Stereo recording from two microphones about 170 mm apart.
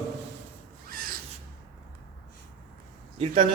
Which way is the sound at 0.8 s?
60° right (ahead or behind).